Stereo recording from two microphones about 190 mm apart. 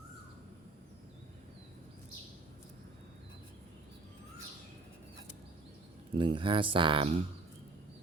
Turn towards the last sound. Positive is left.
turn(degrees=-30)  # may be behind; listen again after turning